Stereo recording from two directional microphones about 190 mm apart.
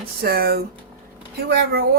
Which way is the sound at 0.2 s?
55° right (ahead or behind).